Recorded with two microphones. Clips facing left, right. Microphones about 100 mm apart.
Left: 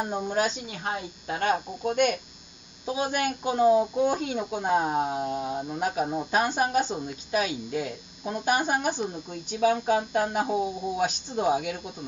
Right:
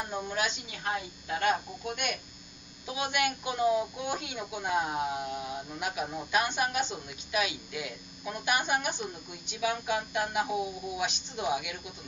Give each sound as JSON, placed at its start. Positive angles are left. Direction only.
{"t": 0.3, "sound": "speech", "side_deg": 40}